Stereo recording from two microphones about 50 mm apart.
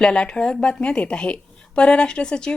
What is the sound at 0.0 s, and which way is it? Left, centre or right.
A woman's voice, centre.